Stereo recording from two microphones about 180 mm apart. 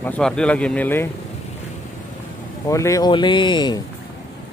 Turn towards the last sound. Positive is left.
turn(degrees=25)  # may be behind; listen again after turning